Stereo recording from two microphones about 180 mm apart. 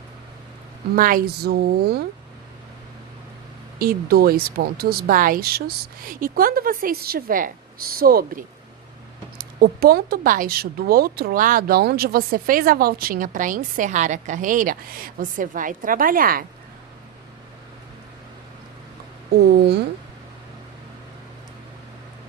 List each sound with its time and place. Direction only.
0.9 s speech: 50° right (ahead or behind)
3.8 s speech: 55° right (ahead or behind)
19.3 s speech: 60° right (ahead or behind)